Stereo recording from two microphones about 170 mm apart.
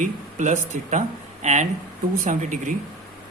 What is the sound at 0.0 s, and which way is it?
Speech, 45° right (ahead or behind).